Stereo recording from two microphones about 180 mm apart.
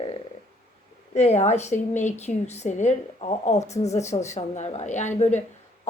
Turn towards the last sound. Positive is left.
turn(degrees=40)  # may be behind; listen again after turning